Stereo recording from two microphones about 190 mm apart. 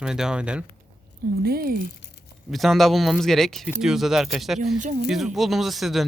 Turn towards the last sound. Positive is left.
turn(degrees=0)  # may be behind; listen again after turning